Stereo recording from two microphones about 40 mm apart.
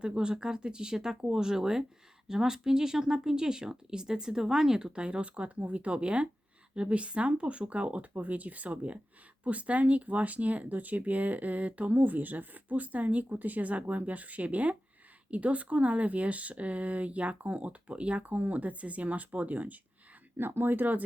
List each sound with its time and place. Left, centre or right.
0.0 s speech: right
4.9 s speech: right
20.4 s speech: right